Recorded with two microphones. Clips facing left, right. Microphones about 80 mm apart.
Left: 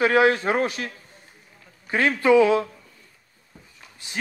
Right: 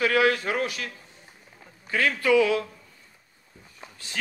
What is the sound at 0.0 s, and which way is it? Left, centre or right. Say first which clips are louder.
Speech: left 4 dB; left.